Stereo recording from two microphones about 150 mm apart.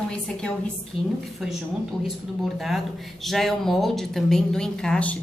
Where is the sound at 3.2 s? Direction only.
Centre (ahead or behind).